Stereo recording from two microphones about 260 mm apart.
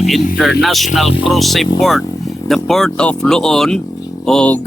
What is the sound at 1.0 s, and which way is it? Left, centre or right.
Speech, left.